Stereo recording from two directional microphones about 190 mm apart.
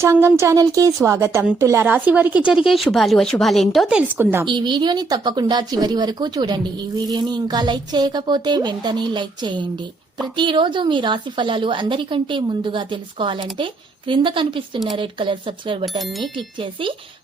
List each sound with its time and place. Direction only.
0.0 s speech: 15° right (ahead or behind)
4.4 s speech: 25° right (ahead or behind)